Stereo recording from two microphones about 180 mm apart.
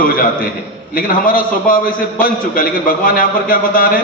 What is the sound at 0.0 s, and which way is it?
A man's voice, 50° left (ahead or behind).